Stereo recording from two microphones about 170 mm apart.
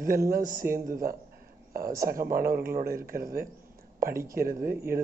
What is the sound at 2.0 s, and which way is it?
Speech, 60° right (ahead or behind).